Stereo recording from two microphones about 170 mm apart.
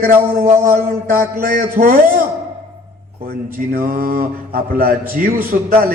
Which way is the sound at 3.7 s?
55° right (ahead or behind).